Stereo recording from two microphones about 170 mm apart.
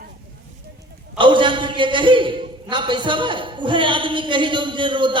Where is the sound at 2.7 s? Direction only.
30° right (ahead or behind).